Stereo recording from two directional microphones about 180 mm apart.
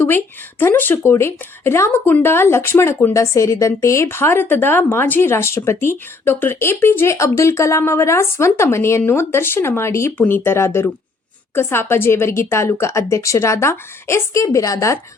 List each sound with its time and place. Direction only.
0.6 s speech: 10° left (ahead or behind)